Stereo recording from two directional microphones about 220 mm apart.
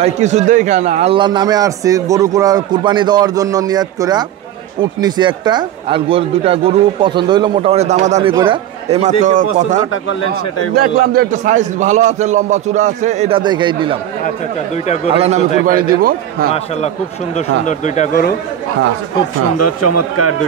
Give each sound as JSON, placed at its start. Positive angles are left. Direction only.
{"t": 0.0, "sound": "a man's voice", "side_deg": -30}
{"t": 10.0, "sound": "speech", "side_deg": 75}
{"t": 10.7, "sound": "a man's voice", "side_deg": -45}
{"t": 15.0, "sound": "a man's voice", "side_deg": -30}
{"t": 15.6, "sound": "a man's voice", "side_deg": -40}
{"t": 17.6, "sound": "speech", "side_deg": 35}
{"t": 19.6, "sound": "speech", "side_deg": 90}